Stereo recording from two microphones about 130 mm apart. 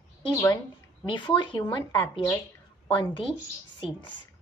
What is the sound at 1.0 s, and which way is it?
Speech, 40° left (ahead or behind).